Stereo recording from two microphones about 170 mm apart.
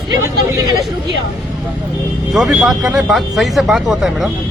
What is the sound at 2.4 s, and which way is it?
Speech, 5° right (ahead or behind).